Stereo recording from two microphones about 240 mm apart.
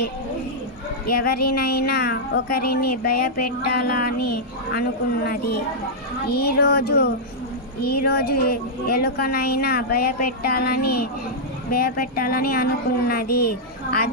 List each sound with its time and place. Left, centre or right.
1.1 s speech: left